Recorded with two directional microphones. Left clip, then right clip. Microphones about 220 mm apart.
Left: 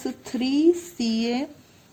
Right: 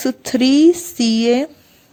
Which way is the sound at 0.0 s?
40° right (ahead or behind).